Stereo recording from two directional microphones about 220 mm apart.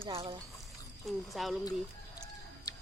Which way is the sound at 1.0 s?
Centre (ahead or behind).